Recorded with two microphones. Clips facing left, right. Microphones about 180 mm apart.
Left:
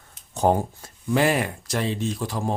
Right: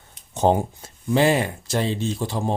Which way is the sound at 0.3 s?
20° right (ahead or behind).